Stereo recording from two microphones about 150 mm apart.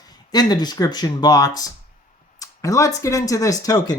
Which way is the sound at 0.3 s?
25° left (ahead or behind).